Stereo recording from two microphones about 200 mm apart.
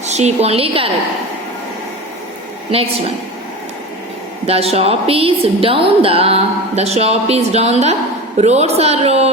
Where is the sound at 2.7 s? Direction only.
30° right (ahead or behind).